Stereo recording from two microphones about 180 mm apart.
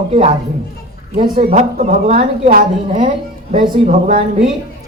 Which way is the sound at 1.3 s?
40° right (ahead or behind).